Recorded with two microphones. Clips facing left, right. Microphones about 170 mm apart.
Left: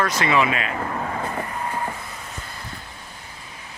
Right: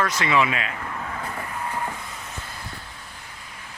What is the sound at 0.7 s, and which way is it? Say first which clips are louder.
Vehicle: left 6 dB; 50° left (ahead or behind).